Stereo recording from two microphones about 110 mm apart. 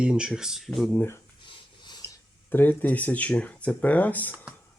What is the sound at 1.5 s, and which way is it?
Filing, 45° left (ahead or behind).